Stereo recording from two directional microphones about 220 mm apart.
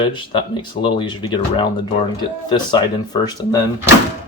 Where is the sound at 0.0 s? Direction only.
20° left (ahead or behind).